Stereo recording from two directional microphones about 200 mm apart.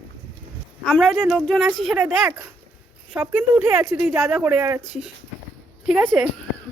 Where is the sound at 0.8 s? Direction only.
5° left (ahead or behind).